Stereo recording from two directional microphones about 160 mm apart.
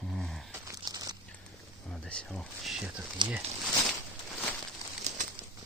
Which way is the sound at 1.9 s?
5° left (ahead or behind).